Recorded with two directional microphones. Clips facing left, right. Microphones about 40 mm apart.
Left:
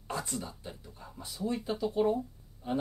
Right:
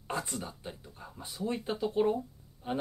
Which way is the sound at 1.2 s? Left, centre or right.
Right.